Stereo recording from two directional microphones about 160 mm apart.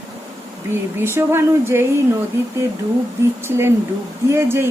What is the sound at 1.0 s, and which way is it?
Speech, 15° right (ahead or behind).